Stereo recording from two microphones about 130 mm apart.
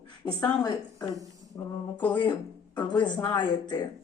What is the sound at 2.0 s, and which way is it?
A woman's voice, 35° left (ahead or behind).